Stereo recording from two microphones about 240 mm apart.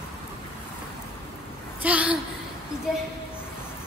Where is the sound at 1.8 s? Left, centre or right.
Centre.